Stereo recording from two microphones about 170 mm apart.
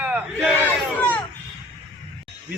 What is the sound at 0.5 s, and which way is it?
Battle cry, 10° left (ahead or behind).